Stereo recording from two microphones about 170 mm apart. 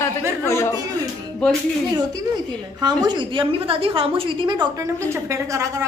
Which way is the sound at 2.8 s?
25° right (ahead or behind).